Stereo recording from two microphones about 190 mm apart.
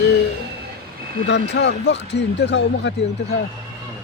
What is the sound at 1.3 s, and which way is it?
Speech, 65° left (ahead or behind).